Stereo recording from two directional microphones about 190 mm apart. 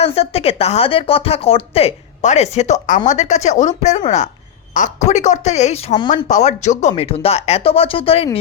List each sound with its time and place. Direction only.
0.0 s speech: 30° left (ahead or behind)